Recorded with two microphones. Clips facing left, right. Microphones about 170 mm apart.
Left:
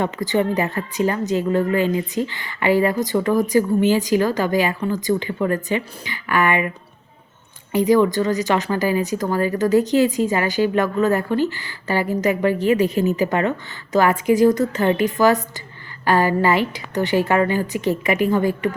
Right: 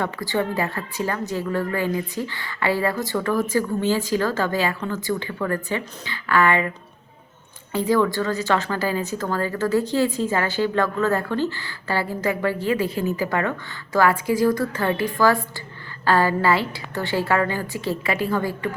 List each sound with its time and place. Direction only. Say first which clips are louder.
0.0 s a woman's voice: left 4 dB; 20° left (ahead or behind)
7.7 s a woman's voice: left 4 dB; 15° left (ahead or behind)